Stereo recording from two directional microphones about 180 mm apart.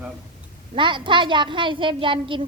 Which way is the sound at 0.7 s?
25° right (ahead or behind).